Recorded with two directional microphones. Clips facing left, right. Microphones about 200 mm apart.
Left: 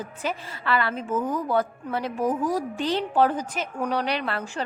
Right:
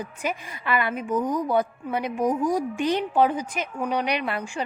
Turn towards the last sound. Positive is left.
turn(degrees=-10)  # may be behind; listen again after turning